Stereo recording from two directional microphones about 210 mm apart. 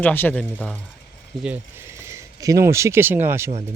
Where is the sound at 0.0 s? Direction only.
10° left (ahead or behind).